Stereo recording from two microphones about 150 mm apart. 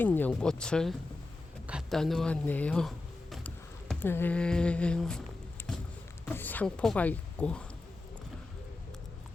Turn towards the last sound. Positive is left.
turn(degrees=10)  # may be behind; listen again after turning